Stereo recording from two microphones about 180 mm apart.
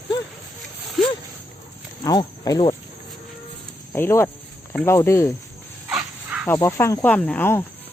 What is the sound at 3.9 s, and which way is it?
Speech, 15° left (ahead or behind).